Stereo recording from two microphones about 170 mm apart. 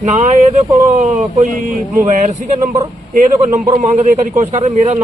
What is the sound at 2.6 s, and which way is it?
Speech, 25° right (ahead or behind).